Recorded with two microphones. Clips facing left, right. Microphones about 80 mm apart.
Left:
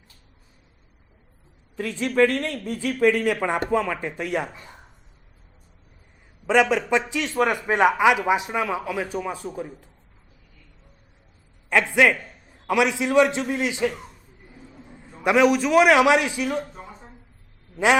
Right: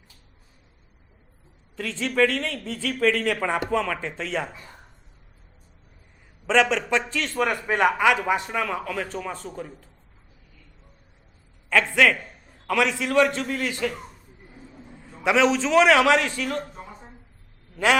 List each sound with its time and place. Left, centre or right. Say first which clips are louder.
1.7 s a man's voice: left 3 dB; centre
6.5 s a man's voice: left 2 dB; centre
11.7 s a man's voice: left 1 dB; centre
14.6 s a sound: even; centre
14.8 s a man's voice: left 1 dB; centre